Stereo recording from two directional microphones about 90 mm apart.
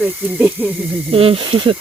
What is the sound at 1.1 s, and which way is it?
Speech, 90° right.